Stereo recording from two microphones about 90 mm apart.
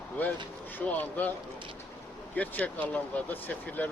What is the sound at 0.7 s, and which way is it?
Speech, 20° left (ahead or behind).